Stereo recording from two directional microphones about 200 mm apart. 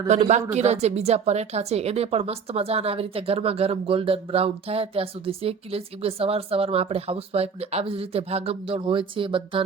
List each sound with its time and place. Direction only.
0.1 s a woman's voice: 35° right (ahead or behind)